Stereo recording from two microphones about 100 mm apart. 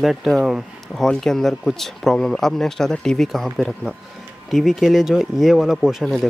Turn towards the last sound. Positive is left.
turn(degrees=0)  # may be behind; listen again after turning